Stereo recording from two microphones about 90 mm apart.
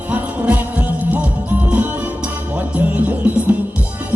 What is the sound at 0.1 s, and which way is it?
Music, 15° right (ahead or behind).